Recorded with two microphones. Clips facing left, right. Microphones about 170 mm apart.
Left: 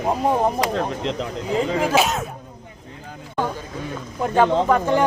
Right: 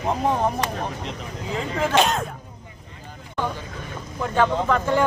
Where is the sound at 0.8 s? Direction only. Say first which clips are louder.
Left 6 dB; 90° left.